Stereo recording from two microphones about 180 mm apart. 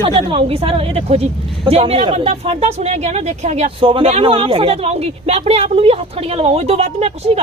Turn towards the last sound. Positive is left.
turn(degrees=-35)  # may be behind; listen again after turning